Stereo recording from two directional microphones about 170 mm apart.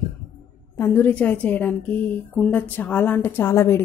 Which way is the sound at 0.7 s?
15° left (ahead or behind).